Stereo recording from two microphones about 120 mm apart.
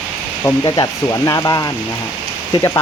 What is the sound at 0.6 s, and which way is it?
Speech, 30° left (ahead or behind).